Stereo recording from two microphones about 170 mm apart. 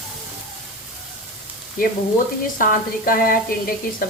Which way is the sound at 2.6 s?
60° left (ahead or behind).